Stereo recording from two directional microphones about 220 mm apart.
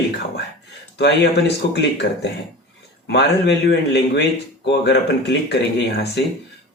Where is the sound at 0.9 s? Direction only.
50° left (ahead or behind).